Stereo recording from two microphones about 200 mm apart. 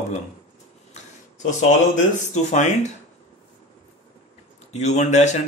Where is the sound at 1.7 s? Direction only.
35° left (ahead or behind).